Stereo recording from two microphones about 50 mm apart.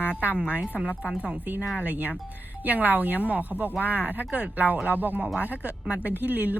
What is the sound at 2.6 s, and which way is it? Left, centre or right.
Speech, right.